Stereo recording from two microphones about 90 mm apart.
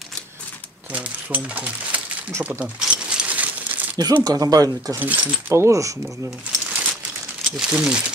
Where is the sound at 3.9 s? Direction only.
50° right (ahead or behind).